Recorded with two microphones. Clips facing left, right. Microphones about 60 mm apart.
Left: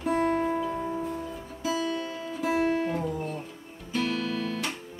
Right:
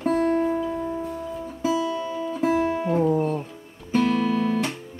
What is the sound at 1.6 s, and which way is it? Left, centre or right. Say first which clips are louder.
Music: right 5 dB; centre.